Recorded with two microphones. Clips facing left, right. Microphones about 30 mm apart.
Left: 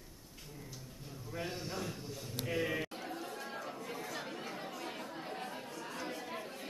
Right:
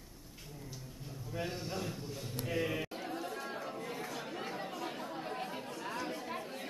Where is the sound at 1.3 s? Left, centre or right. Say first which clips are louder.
Right 1 dB; centre.